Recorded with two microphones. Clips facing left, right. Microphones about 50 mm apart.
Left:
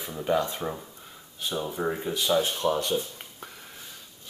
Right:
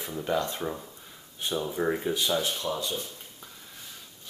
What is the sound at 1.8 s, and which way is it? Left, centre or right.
Speech, centre.